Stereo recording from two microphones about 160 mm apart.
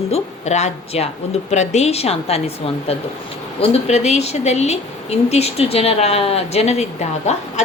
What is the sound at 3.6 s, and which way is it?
A woman's voice, 45° left (ahead or behind).